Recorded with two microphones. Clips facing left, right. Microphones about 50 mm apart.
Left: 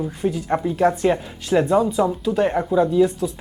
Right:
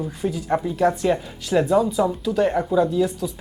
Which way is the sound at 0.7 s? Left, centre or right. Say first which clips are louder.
Left 2 dB; centre.